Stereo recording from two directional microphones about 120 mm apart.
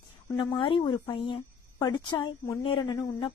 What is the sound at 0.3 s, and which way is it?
A woman's voice, 45° left (ahead or behind).